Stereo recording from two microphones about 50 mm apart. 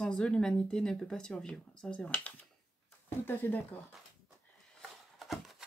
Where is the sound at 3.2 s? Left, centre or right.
Left.